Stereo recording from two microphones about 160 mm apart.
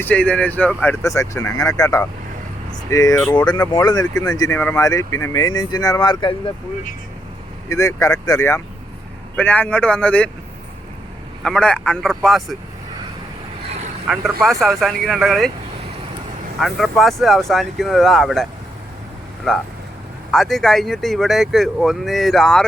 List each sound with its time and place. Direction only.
0.0 s speech: 10° left (ahead or behind); by 6.3 s 25° left (ahead or behind)
7.7 s speech: 20° left (ahead or behind)
11.4 s speech: 5° left (ahead or behind)
14.1 s speech: centre (ahead or behind)
16.6 s speech: centre (ahead or behind)
19.5 s speech: 5° left (ahead or behind)